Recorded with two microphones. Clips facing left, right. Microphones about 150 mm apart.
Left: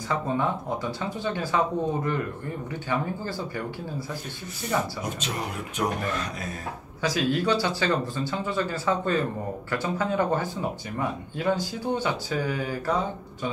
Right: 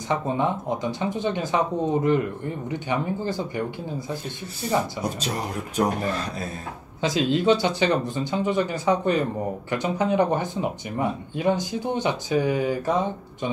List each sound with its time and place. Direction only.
0.1 s speech: 20° right (ahead or behind)
2.9 s speech: 20° right (ahead or behind)
4.6 s speech: 35° right (ahead or behind)
7.0 s speech: 20° right (ahead or behind)